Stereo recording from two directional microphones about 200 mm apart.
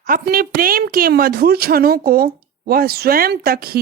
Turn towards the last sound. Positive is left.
turn(degrees=-50)  # may be behind; listen again after turning